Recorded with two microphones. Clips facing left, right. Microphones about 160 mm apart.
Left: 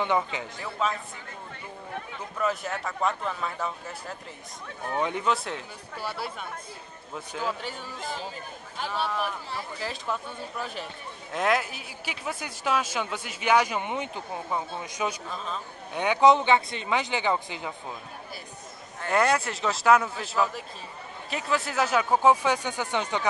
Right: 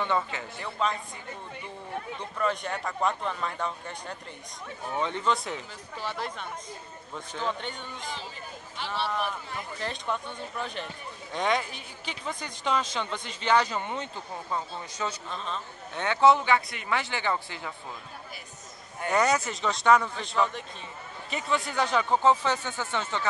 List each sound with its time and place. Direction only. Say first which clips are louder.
0.0 s speech: left 2 dB; 15° left (ahead or behind)
0.8 s speech: even; 5° left (ahead or behind)
2.3 s speech: left 1 dB; 5° left (ahead or behind)
9.8 s speech: right 1 dB; 5° left (ahead or behind)
19.0 s speech: left 1 dB; centre (ahead or behind)